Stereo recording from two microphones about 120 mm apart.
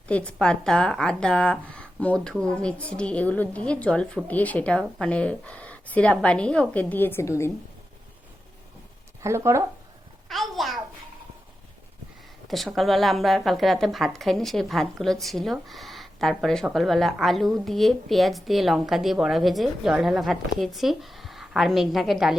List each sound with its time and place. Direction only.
0.1 s a woman's voice: 10° left (ahead or behind)
9.2 s speech: 25° right (ahead or behind)
10.2 s a sound: centre (ahead or behind)
12.5 s a woman's voice: centre (ahead or behind)